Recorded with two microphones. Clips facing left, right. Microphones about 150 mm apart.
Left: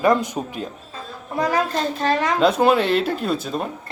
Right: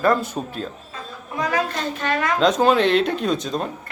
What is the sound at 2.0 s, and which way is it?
Speech, 30° left (ahead or behind).